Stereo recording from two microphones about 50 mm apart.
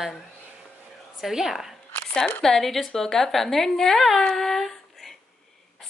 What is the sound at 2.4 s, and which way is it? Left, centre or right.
A woman's voice, centre.